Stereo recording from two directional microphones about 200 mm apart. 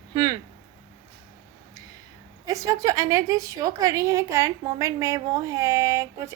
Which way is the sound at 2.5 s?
15° right (ahead or behind).